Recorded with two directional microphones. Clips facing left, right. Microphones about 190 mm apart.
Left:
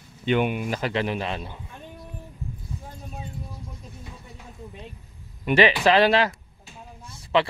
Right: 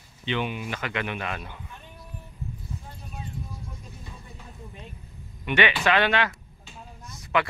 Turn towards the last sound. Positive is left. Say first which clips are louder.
# left 3 dB
turn(degrees=30)  # may be behind; listen again after turning